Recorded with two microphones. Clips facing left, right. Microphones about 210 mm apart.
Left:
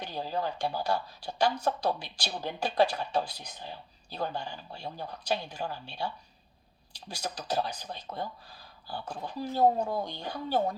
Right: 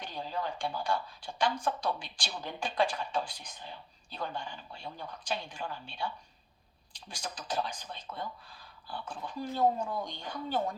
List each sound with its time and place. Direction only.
0.1 s speech: 40° left (ahead or behind)